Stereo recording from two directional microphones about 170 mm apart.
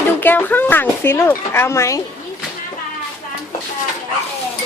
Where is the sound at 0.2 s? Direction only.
10° left (ahead or behind).